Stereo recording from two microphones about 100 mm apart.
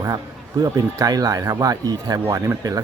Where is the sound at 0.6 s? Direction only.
40° right (ahead or behind).